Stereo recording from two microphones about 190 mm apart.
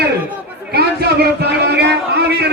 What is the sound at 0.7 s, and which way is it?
A man's voice, 55° right (ahead or behind).